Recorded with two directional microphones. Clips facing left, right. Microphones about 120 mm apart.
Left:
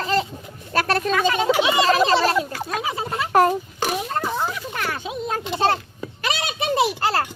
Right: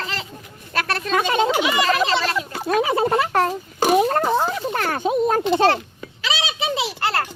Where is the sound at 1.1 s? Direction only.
30° right (ahead or behind).